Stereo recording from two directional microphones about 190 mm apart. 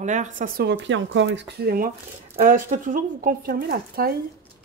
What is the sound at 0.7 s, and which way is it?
Speech, 70° right (ahead or behind).